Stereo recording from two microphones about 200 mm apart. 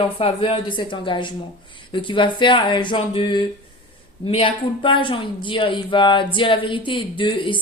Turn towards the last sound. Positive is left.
turn(degrees=25)  # may be behind; listen again after turning